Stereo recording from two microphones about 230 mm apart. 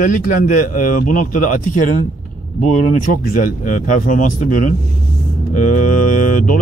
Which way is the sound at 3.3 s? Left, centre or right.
Left.